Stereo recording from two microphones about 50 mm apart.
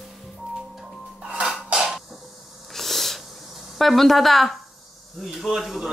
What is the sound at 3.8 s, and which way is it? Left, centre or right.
A woman's voice, centre.